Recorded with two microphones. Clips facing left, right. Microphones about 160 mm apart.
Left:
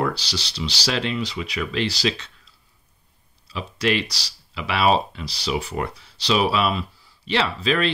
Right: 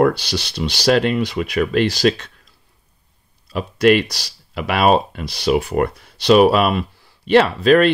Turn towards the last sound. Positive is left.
turn(degrees=-50)  # may be behind; listen again after turning